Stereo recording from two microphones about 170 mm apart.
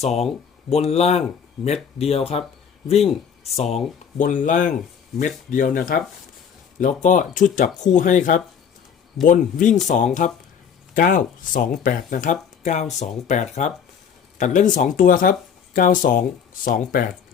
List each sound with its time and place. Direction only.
0.0 s speech: 40° left (ahead or behind)
4.2 s speech: 50° left (ahead or behind)